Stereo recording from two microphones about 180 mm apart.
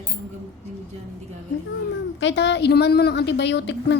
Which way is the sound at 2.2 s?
75° left (ahead or behind).